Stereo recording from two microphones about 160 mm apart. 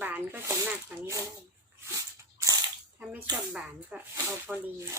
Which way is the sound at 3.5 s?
5° right (ahead or behind).